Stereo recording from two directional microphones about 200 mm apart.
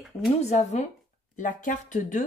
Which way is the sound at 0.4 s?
35° left (ahead or behind).